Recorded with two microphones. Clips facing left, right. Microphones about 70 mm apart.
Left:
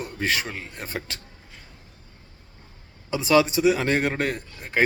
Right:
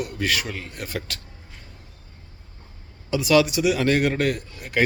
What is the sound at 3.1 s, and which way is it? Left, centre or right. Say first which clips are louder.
Speech: right 1 dB; left.